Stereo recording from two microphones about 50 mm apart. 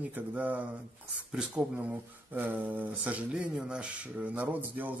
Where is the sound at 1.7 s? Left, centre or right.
Right.